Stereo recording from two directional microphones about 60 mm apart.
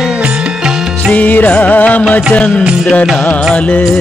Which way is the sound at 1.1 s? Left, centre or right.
Left.